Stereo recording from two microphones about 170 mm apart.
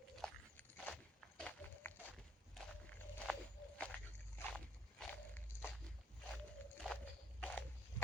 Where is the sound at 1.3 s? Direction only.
10° left (ahead or behind).